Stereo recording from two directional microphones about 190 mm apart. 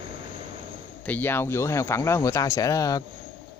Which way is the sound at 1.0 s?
10° left (ahead or behind).